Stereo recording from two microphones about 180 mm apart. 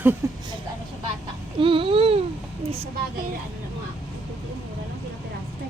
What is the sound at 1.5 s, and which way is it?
Babbling, 30° right (ahead or behind).